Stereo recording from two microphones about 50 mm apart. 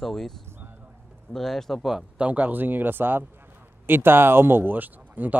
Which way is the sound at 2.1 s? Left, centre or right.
Right.